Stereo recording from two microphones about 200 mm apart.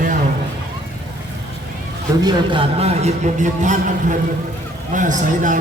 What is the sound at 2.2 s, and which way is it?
A man's voice, 20° right (ahead or behind).